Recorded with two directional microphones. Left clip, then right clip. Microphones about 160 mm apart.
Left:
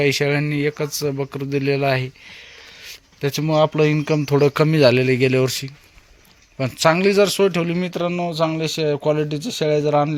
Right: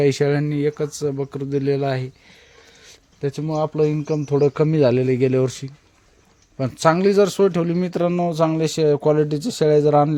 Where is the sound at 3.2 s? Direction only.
5° left (ahead or behind); by 7.9 s 30° right (ahead or behind).